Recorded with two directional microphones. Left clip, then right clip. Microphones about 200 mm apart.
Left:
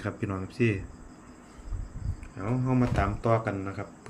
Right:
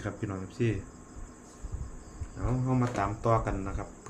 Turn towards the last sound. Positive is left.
turn(degrees=25)  # may be behind; listen again after turning